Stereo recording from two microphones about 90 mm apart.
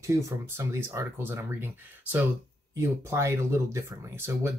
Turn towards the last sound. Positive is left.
turn(degrees=-30)  # may be behind; listen again after turning